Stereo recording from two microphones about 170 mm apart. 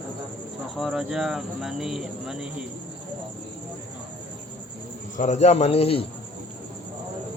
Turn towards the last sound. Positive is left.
turn(degrees=35)  # may be behind; listen again after turning